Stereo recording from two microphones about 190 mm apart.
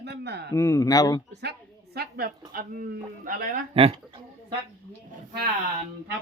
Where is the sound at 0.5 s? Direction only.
15° left (ahead or behind).